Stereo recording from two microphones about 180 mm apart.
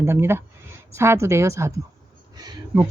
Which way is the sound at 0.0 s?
15° right (ahead or behind).